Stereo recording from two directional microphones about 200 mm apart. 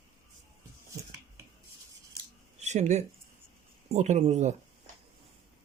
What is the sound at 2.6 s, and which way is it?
Speech, 35° right (ahead or behind).